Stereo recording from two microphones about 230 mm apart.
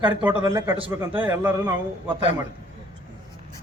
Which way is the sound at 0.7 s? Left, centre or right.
Right.